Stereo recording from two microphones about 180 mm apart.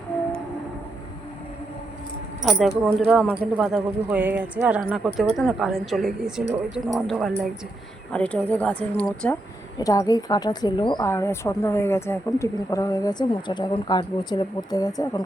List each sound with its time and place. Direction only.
2.4 s a woman's voice: centre (ahead or behind)
9.7 s speech: 20° left (ahead or behind)